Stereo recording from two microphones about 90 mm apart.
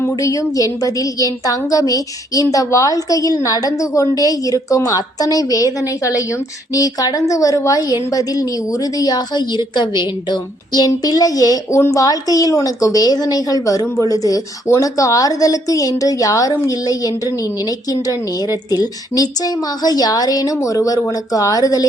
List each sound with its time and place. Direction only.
0.0 s a woman's voice: 35° left (ahead or behind); by 10.8 s 55° left (ahead or behind)
10.8 s a woman's voice: 45° left (ahead or behind)
18.7 s a woman's voice: 45° left (ahead or behind)